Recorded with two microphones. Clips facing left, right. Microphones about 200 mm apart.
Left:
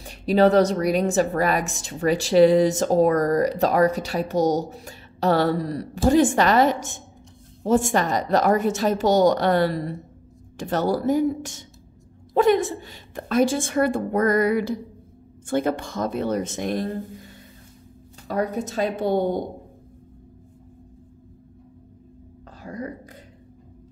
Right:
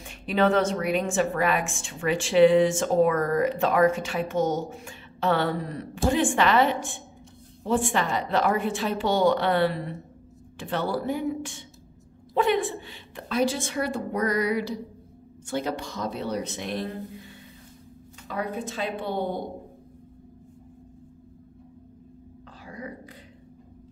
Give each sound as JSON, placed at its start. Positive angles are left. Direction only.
{"t": 0.0, "sound": "a woman's voice", "side_deg": 35}
{"t": 18.3, "sound": "a woman's voice", "side_deg": 40}
{"t": 22.6, "sound": "whispering", "side_deg": 45}